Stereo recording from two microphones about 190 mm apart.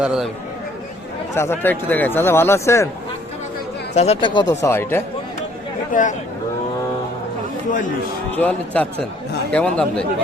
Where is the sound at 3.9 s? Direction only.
35° left (ahead or behind).